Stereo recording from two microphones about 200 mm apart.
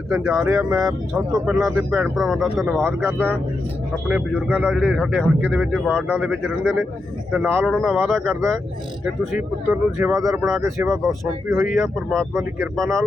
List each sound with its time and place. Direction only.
0.1 s speech: centre (ahead or behind)
7.3 s speech: 5° left (ahead or behind)
10.0 s speech: 15° right (ahead or behind)
10.8 s speech: centre (ahead or behind)
11.4 s speech: 15° right (ahead or behind)
12.1 s speech: centre (ahead or behind)